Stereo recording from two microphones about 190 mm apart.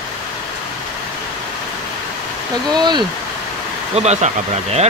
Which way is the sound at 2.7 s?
25° right (ahead or behind).